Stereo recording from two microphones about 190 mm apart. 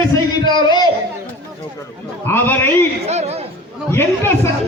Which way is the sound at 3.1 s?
35° right (ahead or behind).